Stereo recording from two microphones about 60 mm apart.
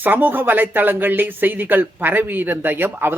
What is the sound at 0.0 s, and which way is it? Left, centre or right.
Speech, right.